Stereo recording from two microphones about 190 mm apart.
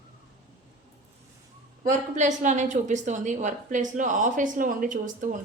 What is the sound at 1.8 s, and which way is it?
A woman's voice, 40° right (ahead or behind).